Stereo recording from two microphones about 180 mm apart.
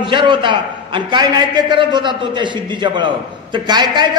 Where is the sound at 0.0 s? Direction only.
25° right (ahead or behind).